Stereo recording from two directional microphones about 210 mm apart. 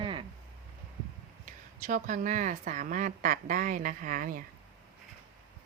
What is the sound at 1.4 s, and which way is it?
A woman's voice, 35° right (ahead or behind).